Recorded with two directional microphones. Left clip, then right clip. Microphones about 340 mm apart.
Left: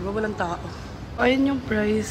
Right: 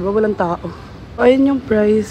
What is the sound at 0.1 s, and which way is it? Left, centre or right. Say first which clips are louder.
A man's voice: right 10 dB; centre.